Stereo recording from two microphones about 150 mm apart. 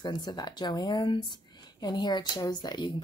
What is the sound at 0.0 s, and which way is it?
Speech, 30° left (ahead or behind).